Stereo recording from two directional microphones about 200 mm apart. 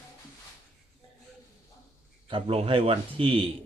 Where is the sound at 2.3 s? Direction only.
30° right (ahead or behind).